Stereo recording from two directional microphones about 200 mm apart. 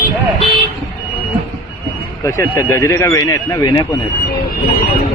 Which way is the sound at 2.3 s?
15° left (ahead or behind).